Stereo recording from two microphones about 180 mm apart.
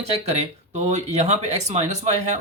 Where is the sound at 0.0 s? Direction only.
35° right (ahead or behind).